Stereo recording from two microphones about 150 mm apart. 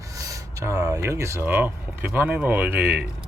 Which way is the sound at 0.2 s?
20° right (ahead or behind).